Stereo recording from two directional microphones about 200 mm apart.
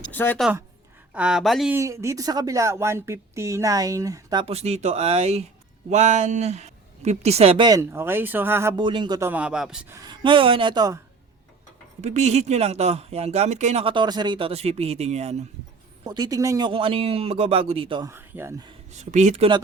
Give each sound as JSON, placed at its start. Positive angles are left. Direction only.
{"t": 0.1, "sound": "speech", "side_deg": 10}
{"t": 1.1, "sound": "speech", "side_deg": -5}
{"t": 1.7, "sound": "speech", "side_deg": -15}
{"t": 7.7, "sound": "speech", "side_deg": -15}
{"t": 9.3, "sound": "speech", "side_deg": -5}
{"t": 9.9, "sound": "speech", "side_deg": -20}
{"t": 12.0, "sound": "speech", "side_deg": -35}
{"t": 16.0, "sound": "speech", "side_deg": -20}
{"t": 18.1, "sound": "speech", "side_deg": -10}
{"t": 18.9, "sound": "speech", "side_deg": -35}